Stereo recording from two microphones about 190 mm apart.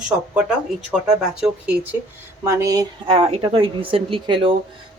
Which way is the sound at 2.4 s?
15° right (ahead or behind).